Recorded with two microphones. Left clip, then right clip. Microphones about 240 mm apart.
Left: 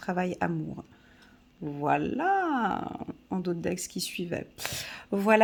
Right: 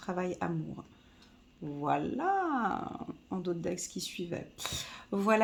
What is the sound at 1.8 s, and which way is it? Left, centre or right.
Speech, left.